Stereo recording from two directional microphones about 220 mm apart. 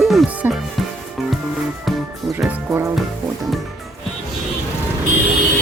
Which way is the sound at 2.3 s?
10° right (ahead or behind).